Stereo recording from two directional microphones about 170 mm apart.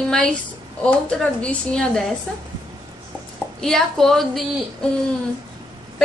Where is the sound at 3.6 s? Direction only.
Centre (ahead or behind).